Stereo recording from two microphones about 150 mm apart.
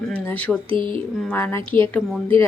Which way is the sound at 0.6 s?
35° right (ahead or behind).